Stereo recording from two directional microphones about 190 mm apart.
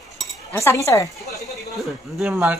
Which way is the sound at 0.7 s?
15° left (ahead or behind).